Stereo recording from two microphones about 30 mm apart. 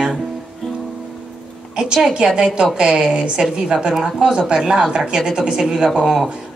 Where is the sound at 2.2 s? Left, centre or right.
Right; by 5.9 s centre.